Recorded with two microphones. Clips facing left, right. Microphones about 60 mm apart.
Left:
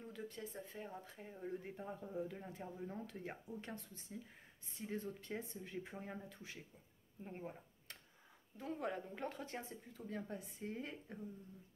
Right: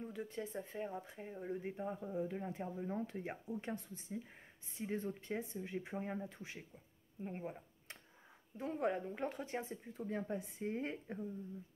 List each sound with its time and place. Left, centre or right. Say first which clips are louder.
0.0 s speech: right 5 dB; centre
7.2 s a sound: right 4 dB; centre
8.5 s speech: right 5 dB; right
9.7 s speech: right 6 dB; right